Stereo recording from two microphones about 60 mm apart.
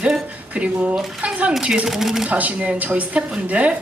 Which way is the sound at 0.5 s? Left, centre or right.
Right.